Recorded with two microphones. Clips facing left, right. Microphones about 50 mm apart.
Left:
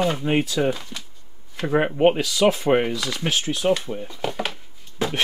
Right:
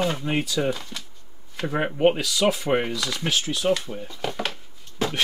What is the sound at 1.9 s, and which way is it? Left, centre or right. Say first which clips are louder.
Speech: right 1 dB; centre.